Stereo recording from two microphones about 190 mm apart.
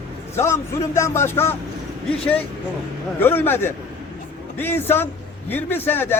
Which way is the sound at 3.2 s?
10° left (ahead or behind).